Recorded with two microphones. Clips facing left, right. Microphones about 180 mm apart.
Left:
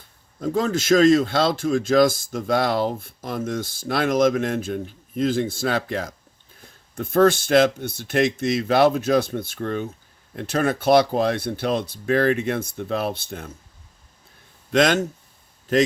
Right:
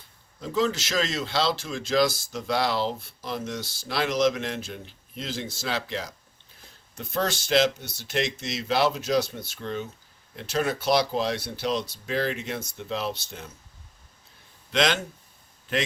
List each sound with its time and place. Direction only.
0.3 s speech: 50° left (ahead or behind)
14.7 s speech: 50° left (ahead or behind)